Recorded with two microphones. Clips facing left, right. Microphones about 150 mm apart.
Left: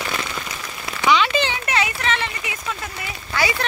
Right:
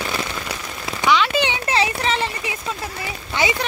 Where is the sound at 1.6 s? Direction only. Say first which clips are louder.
Right 2 dB; 30° right (ahead or behind).